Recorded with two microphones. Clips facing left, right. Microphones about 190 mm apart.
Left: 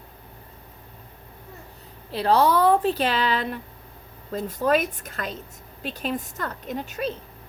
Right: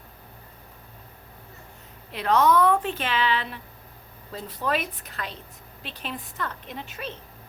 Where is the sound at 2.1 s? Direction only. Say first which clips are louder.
Left 1 dB; 35° left (ahead or behind).